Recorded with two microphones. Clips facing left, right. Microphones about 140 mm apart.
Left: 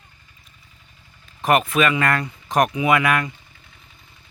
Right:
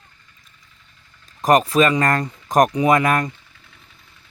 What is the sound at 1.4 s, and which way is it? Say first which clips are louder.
Speech: right 3 dB; 35° right (ahead or behind).